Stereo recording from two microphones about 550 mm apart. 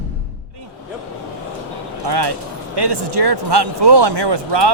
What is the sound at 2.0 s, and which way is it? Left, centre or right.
Speech, right.